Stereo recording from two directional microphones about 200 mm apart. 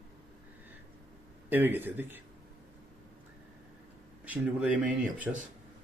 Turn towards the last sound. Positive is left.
turn(degrees=-5)  # may be behind; listen again after turning